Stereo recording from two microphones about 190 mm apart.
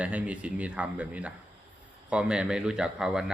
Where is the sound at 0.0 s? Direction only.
5° right (ahead or behind).